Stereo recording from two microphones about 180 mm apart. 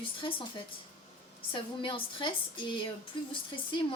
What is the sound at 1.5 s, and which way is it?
A woman's voice, 30° left (ahead or behind).